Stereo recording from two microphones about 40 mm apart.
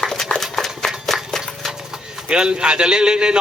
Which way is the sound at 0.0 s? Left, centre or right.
Centre.